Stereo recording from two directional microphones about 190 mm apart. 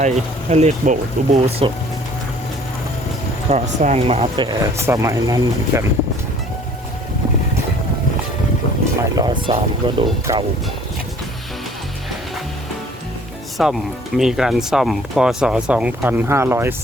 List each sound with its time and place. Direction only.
0.0 s speech: 35° right (ahead or behind)
3.5 s speech: 35° right (ahead or behind); by 5.8 s 15° right (ahead or behind)
9.1 s speech: 25° right (ahead or behind)
13.6 s speech: centre (ahead or behind)